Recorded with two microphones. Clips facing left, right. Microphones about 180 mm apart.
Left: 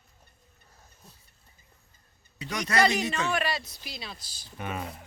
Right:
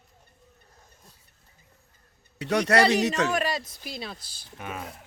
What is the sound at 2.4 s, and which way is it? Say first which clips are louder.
Speech: right 5 dB; 70° right (ahead or behind).